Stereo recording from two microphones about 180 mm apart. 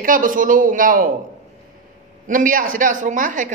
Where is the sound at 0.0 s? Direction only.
50° right (ahead or behind).